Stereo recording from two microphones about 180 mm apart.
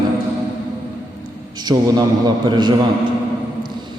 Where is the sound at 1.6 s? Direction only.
25° right (ahead or behind).